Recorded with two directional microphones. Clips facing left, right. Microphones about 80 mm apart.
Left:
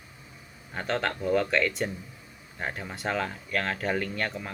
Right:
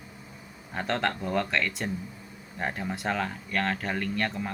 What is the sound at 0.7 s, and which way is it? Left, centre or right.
Speech, centre.